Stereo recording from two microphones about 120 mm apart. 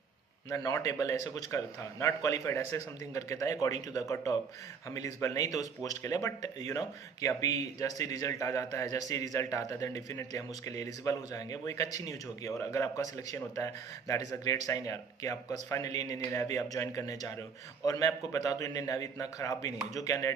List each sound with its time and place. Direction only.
0.5 s speech: 30° left (ahead or behind)
14.7 s speech: 25° left (ahead or behind)